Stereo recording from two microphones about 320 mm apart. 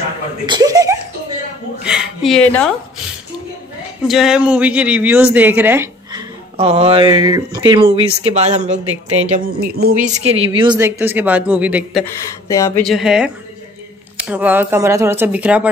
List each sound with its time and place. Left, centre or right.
0.5 s speech: centre
1.8 s a sound: centre
4.1 s speech: centre
12.4 s speech: centre